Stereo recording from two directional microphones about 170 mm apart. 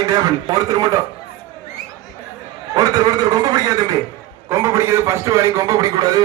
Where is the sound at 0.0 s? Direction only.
20° right (ahead or behind).